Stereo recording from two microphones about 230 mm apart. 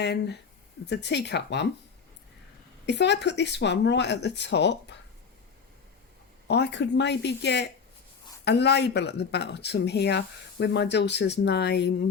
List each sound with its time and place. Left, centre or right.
0.0 s speech: left
2.8 s speech: left
6.5 s speech: left